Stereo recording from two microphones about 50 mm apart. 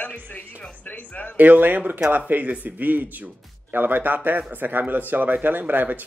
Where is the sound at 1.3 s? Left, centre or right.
Right.